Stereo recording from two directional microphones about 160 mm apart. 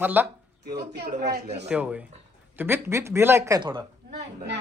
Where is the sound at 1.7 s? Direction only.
5° right (ahead or behind).